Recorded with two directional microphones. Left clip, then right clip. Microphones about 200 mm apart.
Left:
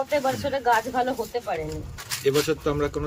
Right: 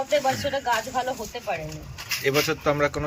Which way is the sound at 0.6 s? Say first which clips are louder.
Left 6 dB; 25° left (ahead or behind).